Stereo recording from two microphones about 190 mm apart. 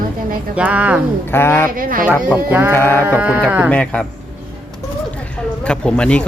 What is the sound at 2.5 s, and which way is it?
Speech, 10° right (ahead or behind).